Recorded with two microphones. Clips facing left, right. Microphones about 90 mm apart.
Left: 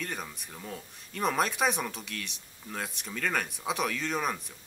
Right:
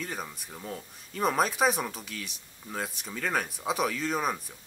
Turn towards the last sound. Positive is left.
turn(degrees=-5)  # may be behind; listen again after turning